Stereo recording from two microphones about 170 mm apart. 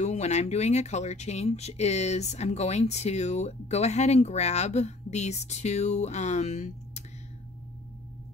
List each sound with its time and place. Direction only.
0.0 s speech: 40° left (ahead or behind)